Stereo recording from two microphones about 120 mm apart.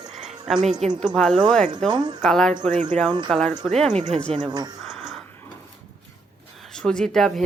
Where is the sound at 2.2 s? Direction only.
5° left (ahead or behind).